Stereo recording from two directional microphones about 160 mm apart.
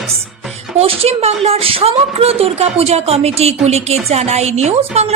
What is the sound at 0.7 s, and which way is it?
A woman's voice, 35° right (ahead or behind).